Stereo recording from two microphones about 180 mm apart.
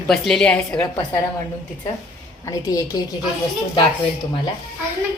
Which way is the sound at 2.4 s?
20° left (ahead or behind).